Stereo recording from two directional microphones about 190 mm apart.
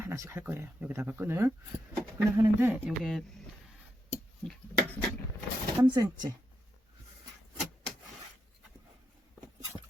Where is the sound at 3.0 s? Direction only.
Centre (ahead or behind).